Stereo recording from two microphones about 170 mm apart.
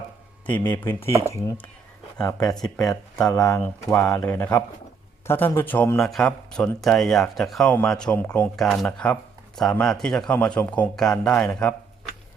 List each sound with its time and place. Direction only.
0.4 s speech: 10° left (ahead or behind)
2.6 s a man's voice: 5° left (ahead or behind)
3.3 s speech: 20° left (ahead or behind)
3.8 s a man's voice: 5° left (ahead or behind)